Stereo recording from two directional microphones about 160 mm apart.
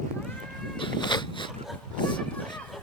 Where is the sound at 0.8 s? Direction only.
30° left (ahead or behind).